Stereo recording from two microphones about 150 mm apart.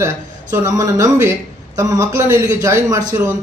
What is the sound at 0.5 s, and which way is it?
A man's voice, 20° right (ahead or behind).